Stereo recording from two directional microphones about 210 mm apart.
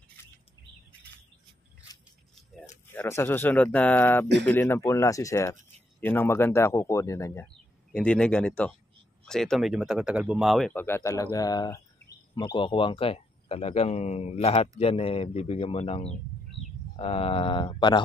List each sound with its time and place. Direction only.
2.9 s a man's voice: 10° left (ahead or behind)